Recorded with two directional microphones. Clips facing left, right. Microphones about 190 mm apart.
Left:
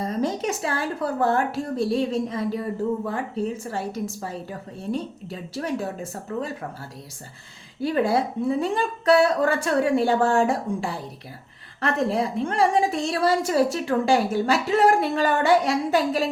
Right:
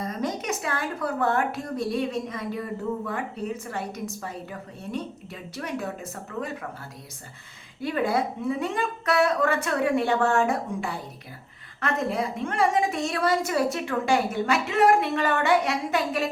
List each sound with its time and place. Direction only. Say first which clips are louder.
0.0 s a woman's voice: left 5 dB; 30° left (ahead or behind)
3.7 s a woman's voice: left 4 dB; 30° left (ahead or behind)
7.8 s a woman's voice: left 3 dB; 30° left (ahead or behind)